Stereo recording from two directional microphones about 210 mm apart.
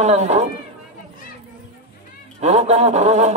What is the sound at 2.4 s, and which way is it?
Mantra, 35° right (ahead or behind).